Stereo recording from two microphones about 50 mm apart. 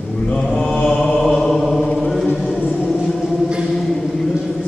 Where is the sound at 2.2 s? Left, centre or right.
Centre.